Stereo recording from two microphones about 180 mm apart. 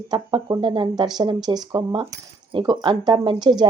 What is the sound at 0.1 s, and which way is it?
Speech, 25° right (ahead or behind).